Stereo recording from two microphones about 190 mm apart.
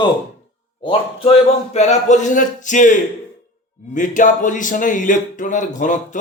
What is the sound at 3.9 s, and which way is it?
Speech, 40° left (ahead or behind).